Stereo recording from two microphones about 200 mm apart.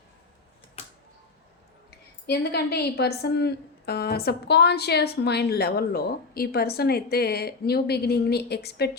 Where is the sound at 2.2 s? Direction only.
55° left (ahead or behind).